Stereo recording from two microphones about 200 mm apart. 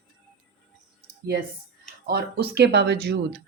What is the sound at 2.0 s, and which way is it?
A woman's voice, 50° right (ahead or behind).